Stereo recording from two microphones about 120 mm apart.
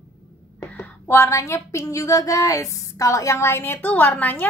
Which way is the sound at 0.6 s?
20° left (ahead or behind).